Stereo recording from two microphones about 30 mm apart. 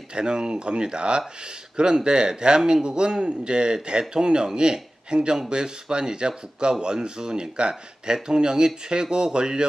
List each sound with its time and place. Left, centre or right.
0.1 s speech: right